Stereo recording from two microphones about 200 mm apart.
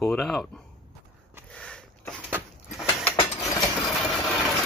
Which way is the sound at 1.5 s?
5° left (ahead or behind).